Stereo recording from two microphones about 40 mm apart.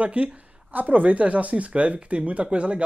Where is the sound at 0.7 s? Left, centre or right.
Right.